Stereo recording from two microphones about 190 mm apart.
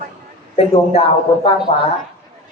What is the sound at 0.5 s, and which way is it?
Speech, 30° left (ahead or behind).